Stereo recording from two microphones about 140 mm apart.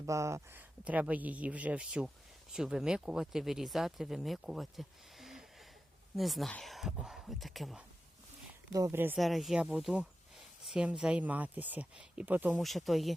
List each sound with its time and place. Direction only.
0.0 s speech: 20° right (ahead or behind)
0.9 s speech: 10° right (ahead or behind)
8.7 s speech: 20° right (ahead or behind)
9.1 s speech: centre (ahead or behind)
12.5 s speech: centre (ahead or behind)